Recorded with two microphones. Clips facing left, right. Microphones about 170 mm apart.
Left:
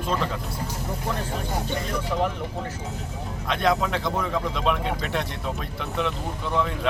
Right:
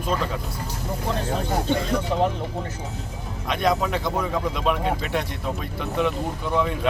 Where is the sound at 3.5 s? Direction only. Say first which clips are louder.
Right 1 dB; 5° right (ahead or behind).